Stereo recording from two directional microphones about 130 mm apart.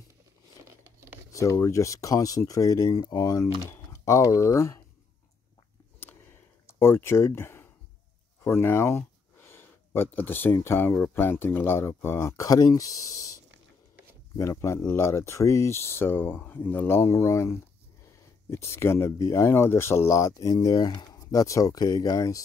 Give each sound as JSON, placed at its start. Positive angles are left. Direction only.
{"t": 1.3, "sound": "speech", "side_deg": 25}
{"t": 6.7, "sound": "speech", "side_deg": 20}